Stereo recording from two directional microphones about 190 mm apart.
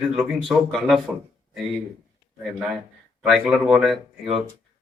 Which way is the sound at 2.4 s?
Centre (ahead or behind).